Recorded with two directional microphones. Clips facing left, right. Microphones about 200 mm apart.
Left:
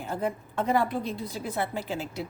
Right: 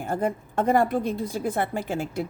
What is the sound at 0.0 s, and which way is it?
A woman's voice, 50° right (ahead or behind).